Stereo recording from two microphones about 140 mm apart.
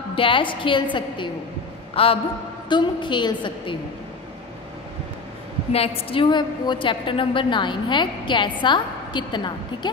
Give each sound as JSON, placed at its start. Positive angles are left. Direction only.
{"t": 0.1, "sound": "a woman's voice", "side_deg": 40}
{"t": 5.7, "sound": "a woman's voice", "side_deg": 45}